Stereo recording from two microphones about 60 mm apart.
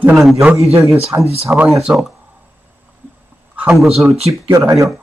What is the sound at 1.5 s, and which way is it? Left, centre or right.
Speech, right.